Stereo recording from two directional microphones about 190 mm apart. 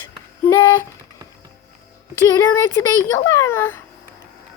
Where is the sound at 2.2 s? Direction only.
20° left (ahead or behind).